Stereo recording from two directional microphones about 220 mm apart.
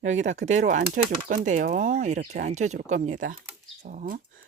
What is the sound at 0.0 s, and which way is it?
Speech, 35° right (ahead or behind).